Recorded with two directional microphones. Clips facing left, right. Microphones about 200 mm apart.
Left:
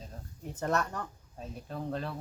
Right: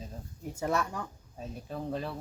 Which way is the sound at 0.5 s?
10° right (ahead or behind).